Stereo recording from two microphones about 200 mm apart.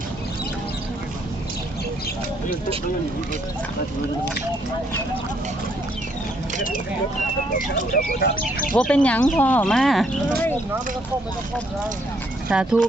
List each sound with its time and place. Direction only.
7.7 s speech: 50° left (ahead or behind)
8.7 s speech: 5° left (ahead or behind)
12.5 s speech: 5° right (ahead or behind)